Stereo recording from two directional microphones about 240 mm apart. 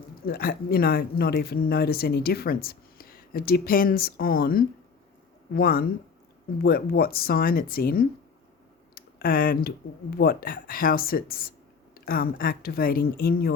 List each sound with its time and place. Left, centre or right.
0.3 s speech: left